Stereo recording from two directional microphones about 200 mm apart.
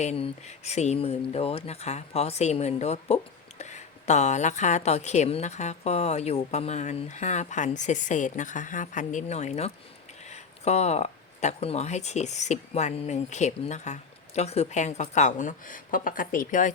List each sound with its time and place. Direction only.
0.0 s speech: 35° left (ahead or behind)